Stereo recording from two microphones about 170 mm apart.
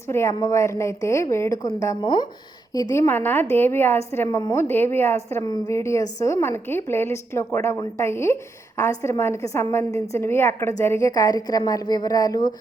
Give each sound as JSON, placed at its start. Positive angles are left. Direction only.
{"t": 0.1, "sound": "a woman's voice", "side_deg": 15}